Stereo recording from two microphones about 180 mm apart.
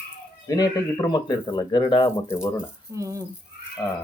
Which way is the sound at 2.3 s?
15° left (ahead or behind).